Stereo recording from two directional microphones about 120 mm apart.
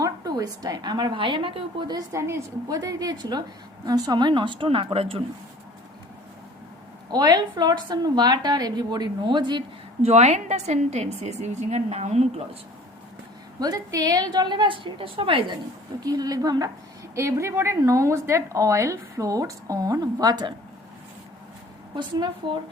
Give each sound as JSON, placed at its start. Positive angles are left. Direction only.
{"t": 0.0, "sound": "a woman's voice", "side_deg": -30}
{"t": 2.0, "sound": "a woman's voice", "side_deg": -25}
{"t": 7.1, "sound": "a woman's voice", "side_deg": -35}
{"t": 10.0, "sound": "a woman's voice", "side_deg": -65}
{"t": 13.6, "sound": "a woman's voice", "side_deg": -30}
{"t": 16.0, "sound": "a woman's voice", "side_deg": -35}
{"t": 21.9, "sound": "a woman's voice", "side_deg": -40}